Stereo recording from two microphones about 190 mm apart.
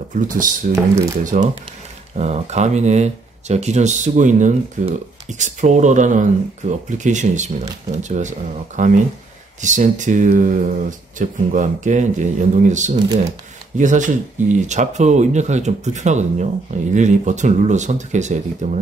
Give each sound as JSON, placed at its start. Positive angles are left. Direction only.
{"t": 0.1, "sound": "speech", "side_deg": -45}